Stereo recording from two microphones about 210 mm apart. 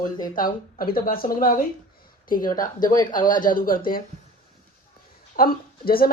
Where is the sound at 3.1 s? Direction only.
40° left (ahead or behind).